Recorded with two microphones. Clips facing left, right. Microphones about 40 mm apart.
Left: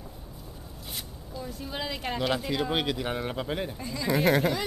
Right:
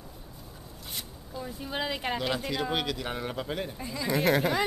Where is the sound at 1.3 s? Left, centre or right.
Centre.